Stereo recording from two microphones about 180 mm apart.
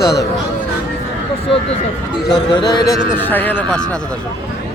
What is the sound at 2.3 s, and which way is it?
Speech, 25° left (ahead or behind).